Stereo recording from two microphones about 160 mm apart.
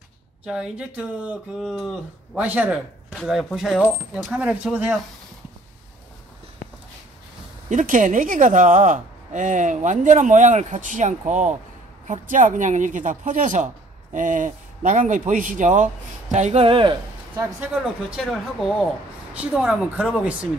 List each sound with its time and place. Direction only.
0.5 s speech: 5° right (ahead or behind)
3.1 s speech: centre (ahead or behind)
7.7 s a woman's voice: 55° right (ahead or behind); by 16.9 s 35° right (ahead or behind)
18.1 s speech: centre (ahead or behind)